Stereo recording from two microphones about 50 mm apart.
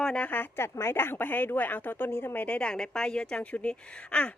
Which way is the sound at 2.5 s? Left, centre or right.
Centre.